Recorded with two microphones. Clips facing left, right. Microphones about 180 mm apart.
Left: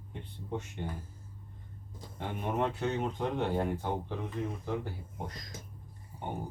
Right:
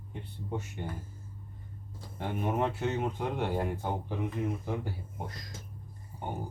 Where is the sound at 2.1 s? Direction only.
5° right (ahead or behind).